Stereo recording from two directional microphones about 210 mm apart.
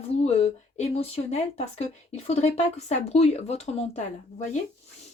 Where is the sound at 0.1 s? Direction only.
30° left (ahead or behind).